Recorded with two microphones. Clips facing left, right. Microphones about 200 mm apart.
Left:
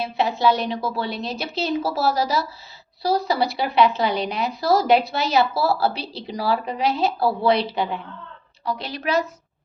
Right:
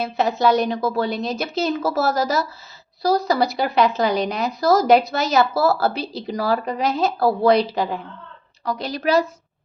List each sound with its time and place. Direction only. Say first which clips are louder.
0.0 s a woman's voice: right 2 dB; 45° right (ahead or behind)